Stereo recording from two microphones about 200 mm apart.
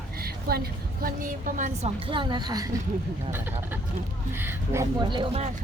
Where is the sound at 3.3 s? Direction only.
10° right (ahead or behind).